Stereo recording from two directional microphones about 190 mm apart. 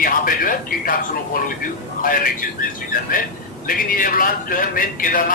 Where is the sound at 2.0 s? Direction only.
45° left (ahead or behind).